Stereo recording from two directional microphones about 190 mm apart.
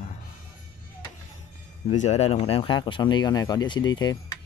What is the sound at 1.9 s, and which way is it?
Speech, 35° left (ahead or behind).